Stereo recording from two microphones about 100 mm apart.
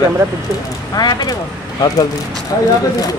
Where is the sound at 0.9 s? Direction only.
40° left (ahead or behind).